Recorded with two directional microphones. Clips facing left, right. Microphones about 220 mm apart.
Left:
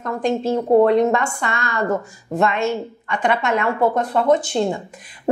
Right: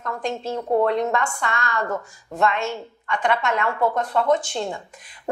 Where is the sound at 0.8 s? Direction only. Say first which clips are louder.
Left 6 dB; 10° left (ahead or behind).